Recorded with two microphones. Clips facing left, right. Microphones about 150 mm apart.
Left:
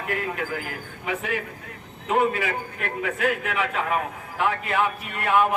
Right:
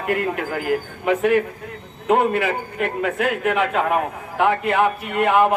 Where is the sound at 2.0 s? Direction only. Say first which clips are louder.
Right 5 dB; 65° right (ahead or behind).